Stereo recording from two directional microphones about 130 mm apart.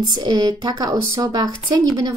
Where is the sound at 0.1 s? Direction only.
30° right (ahead or behind).